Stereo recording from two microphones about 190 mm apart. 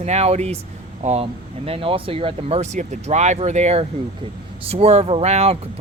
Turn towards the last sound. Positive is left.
turn(degrees=-35)  # may be behind; listen again after turning